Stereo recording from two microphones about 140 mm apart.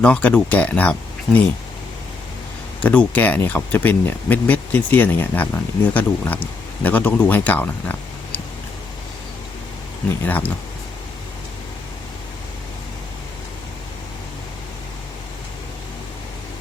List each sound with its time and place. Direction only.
0.0 s speech: 5° left (ahead or behind)
2.8 s speech: 10° left (ahead or behind)
10.2 s speech: 10° left (ahead or behind)